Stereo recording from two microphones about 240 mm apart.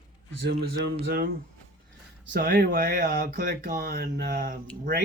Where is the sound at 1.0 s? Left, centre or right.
Right.